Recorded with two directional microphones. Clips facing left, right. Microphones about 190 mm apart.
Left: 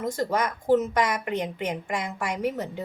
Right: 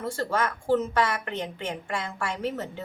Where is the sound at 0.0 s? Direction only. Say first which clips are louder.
Left 2 dB; 15° left (ahead or behind).